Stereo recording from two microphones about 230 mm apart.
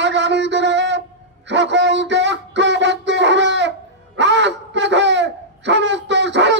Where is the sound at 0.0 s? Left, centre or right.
Right.